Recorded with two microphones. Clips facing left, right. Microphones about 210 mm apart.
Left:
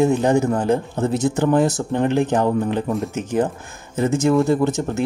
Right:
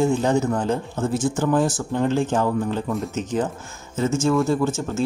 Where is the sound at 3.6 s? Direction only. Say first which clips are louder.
Left 3 dB; 55° left (ahead or behind).